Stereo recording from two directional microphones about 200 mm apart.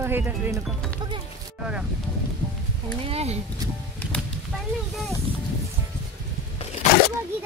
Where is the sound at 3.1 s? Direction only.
30° right (ahead or behind).